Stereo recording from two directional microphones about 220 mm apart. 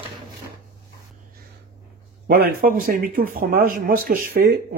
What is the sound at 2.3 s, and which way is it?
Speech, 40° right (ahead or behind).